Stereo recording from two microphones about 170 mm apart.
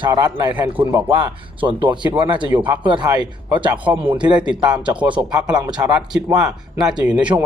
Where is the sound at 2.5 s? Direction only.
10° right (ahead or behind).